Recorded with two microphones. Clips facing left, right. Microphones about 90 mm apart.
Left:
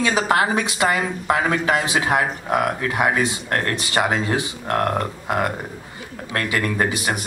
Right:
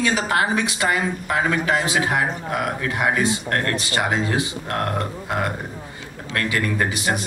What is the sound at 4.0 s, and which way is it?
Speech, 45° left (ahead or behind).